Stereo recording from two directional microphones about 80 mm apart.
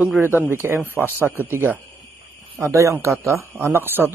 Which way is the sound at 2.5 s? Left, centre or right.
Right.